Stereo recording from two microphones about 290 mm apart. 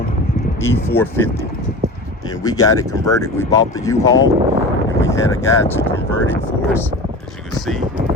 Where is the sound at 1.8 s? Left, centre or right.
Right.